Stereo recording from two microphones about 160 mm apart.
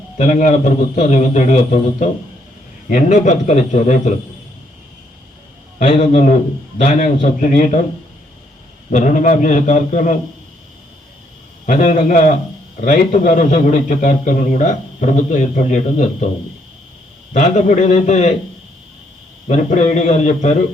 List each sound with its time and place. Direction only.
0.2 s a man's voice: 50° left (ahead or behind)
6.0 s a man's voice: 40° left (ahead or behind)
7.4 s a man's voice: 50° left (ahead or behind)
8.9 s a man's voice: 50° left (ahead or behind)
11.6 s a man's voice: 50° left (ahead or behind)
17.3 s a man's voice: 45° left (ahead or behind)
19.5 s a man's voice: 45° left (ahead or behind)